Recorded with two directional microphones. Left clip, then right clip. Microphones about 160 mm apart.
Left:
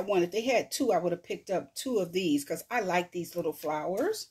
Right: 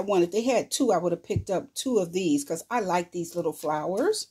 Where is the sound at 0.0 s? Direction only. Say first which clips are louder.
Right 4 dB; 40° right (ahead or behind).